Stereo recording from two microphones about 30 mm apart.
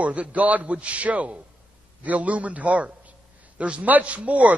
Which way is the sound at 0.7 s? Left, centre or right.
Right.